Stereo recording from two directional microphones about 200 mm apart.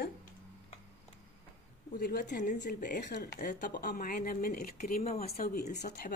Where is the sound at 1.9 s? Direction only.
45° left (ahead or behind).